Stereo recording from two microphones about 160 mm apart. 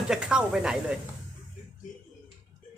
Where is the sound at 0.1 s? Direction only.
5° right (ahead or behind).